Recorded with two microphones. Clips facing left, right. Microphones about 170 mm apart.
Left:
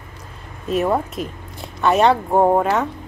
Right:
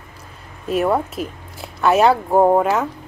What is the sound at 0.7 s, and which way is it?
Speech, centre (ahead or behind).